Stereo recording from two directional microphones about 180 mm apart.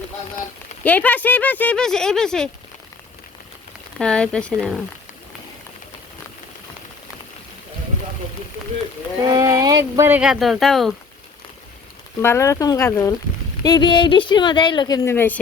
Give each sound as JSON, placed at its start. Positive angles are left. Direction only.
{"t": 0.9, "sound": "speech", "side_deg": 10}
{"t": 3.9, "sound": "speech", "side_deg": 5}
{"t": 9.3, "sound": "speech", "side_deg": -20}
{"t": 12.2, "sound": "speech", "side_deg": 15}